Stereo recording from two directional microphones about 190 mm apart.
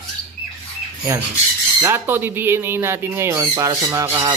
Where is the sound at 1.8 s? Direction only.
10° right (ahead or behind).